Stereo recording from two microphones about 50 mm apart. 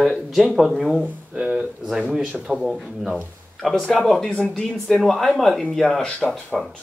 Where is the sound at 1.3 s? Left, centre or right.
Right.